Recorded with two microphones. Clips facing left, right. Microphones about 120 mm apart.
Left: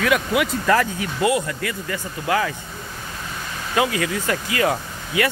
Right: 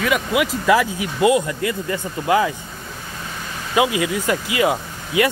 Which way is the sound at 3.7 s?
15° right (ahead or behind).